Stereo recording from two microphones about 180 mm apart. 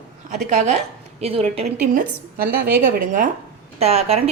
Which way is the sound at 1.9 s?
55° right (ahead or behind).